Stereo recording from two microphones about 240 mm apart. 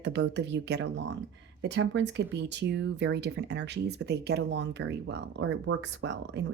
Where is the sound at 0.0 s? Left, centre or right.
Right.